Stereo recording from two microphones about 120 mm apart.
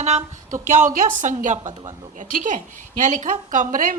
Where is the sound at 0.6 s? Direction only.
90° right.